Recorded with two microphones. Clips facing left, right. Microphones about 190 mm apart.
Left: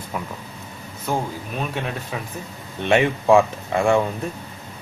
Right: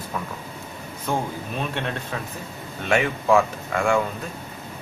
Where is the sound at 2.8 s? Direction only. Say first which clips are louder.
Left 4 dB; 25° left (ahead or behind).